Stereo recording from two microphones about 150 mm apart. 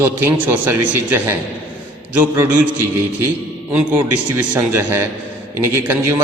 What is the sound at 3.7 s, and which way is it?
A man's voice, 10° right (ahead or behind).